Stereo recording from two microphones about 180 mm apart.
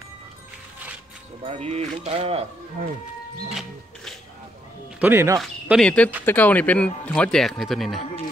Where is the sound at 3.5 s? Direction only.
Centre (ahead or behind).